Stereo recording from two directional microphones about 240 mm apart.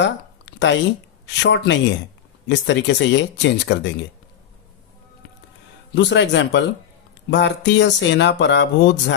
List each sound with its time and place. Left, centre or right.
0.0 s a sound: left
1.4 s speech: left
5.9 s speech: left